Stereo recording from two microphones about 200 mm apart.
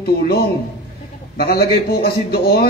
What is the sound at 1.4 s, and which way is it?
A man's voice, 50° left (ahead or behind).